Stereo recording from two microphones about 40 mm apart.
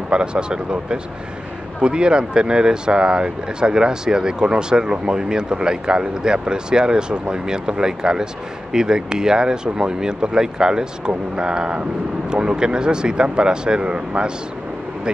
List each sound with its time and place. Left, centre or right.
0.1 s speech: right